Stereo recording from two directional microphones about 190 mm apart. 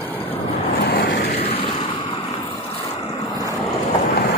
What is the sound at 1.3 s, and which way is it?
Vehicle, 30° left (ahead or behind).